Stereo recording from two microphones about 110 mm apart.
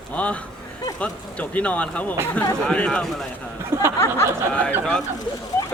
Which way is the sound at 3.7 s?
25° right (ahead or behind).